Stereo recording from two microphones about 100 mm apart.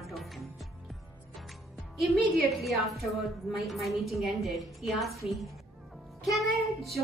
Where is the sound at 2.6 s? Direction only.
Centre (ahead or behind).